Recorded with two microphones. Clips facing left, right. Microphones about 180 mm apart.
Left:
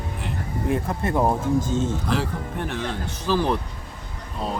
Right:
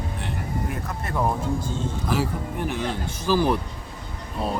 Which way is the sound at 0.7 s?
25° left (ahead or behind).